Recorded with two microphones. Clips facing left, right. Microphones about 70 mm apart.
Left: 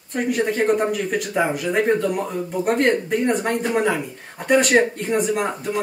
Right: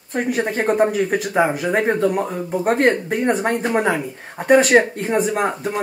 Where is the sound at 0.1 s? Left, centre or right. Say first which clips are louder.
Even; right.